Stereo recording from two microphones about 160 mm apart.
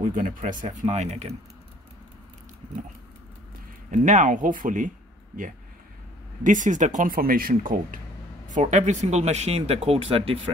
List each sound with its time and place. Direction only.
0.0 s speech: 55° right (ahead or behind)
3.9 s speech: 50° right (ahead or behind)
8.5 s speech: 50° right (ahead or behind)